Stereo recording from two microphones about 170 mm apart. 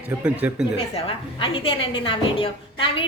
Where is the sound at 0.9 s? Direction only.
35° left (ahead or behind).